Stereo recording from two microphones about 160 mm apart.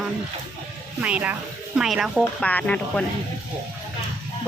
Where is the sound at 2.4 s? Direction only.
10° left (ahead or behind).